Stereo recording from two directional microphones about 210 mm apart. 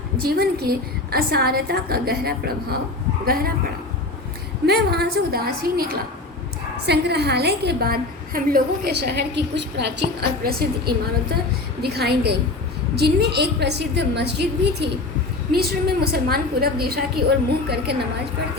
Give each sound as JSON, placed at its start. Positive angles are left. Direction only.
{"t": 0.2, "sound": "a woman's voice", "side_deg": -50}
{"t": 4.6, "sound": "a woman's voice", "side_deg": -50}